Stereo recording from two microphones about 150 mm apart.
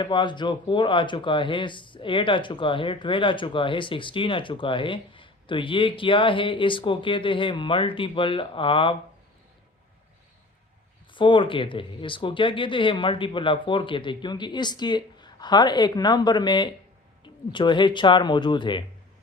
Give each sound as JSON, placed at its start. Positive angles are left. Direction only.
{"t": 0.0, "sound": "speech", "side_deg": 30}
{"t": 11.1, "sound": "speech", "side_deg": 35}